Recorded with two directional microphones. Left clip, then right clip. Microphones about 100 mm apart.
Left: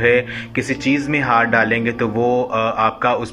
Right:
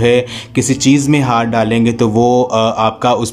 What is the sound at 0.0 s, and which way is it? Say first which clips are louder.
A man's voice: right 3 dB; 45° right (ahead or behind).